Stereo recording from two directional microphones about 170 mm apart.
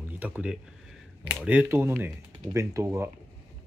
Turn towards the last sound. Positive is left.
turn(degrees=-15)  # may be behind; listen again after turning